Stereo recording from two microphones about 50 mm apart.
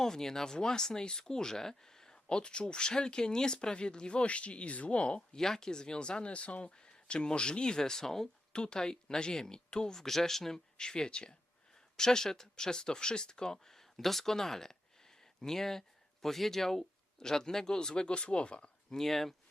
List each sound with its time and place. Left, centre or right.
0.0 s speech: centre
18.9 s speech: centre